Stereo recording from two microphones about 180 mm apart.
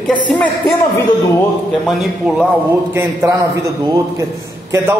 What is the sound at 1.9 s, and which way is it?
Speech, centre (ahead or behind).